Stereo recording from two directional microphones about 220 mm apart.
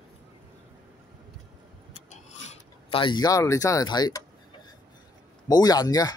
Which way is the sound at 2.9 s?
20° left (ahead or behind).